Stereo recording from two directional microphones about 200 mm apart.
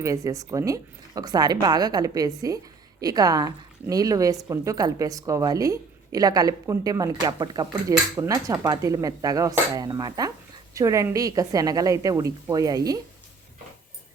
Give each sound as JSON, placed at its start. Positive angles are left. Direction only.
{"t": 0.0, "sound": "a woman's voice", "side_deg": -15}